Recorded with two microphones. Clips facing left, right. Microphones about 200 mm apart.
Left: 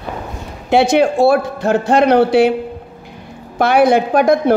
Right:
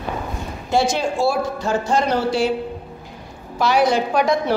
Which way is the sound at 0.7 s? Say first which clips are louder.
Left 8 dB; 65° left (ahead or behind).